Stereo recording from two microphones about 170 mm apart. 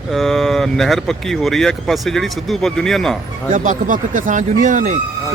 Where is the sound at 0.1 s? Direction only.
Centre (ahead or behind).